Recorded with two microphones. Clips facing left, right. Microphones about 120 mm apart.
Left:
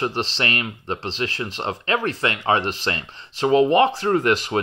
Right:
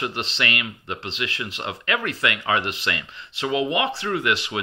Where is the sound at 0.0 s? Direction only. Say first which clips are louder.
Left 3 dB; 35° left (ahead or behind).